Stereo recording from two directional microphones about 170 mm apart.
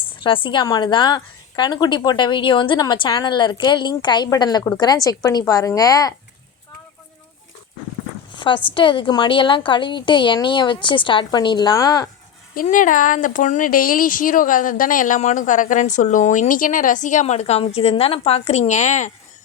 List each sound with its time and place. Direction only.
0.0 s a woman's voice: 30° left (ahead or behind)
8.4 s a woman's voice: 30° left (ahead or behind)
12.6 s speech: 50° left (ahead or behind)